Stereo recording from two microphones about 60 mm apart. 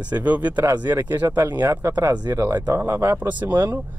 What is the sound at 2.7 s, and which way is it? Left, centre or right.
Speech, right.